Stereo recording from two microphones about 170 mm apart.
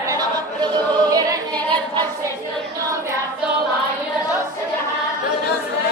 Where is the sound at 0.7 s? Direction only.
25° right (ahead or behind).